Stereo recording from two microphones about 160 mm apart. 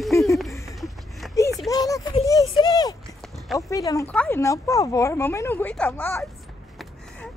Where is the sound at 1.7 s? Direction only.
20° left (ahead or behind).